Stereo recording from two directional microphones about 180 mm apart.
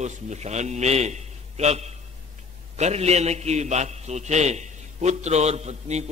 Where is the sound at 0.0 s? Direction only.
40° right (ahead or behind).